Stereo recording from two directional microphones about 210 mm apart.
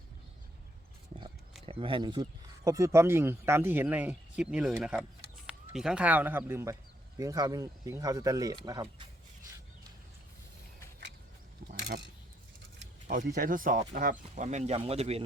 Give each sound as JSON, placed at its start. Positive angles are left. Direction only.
{"t": 1.6, "sound": "speech", "side_deg": -25}
{"t": 11.7, "sound": "a sound", "side_deg": -50}
{"t": 13.1, "sound": "speech", "side_deg": -40}